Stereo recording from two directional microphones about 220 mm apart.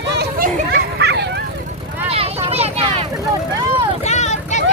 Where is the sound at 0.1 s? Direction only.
45° right (ahead or behind).